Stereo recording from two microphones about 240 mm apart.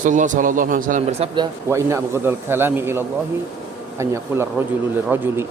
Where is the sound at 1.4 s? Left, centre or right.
Centre.